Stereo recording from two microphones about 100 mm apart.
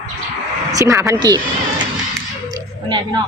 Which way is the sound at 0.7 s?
35° right (ahead or behind).